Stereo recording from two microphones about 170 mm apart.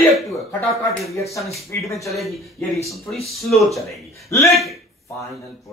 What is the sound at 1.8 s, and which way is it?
Speech, 20° left (ahead or behind).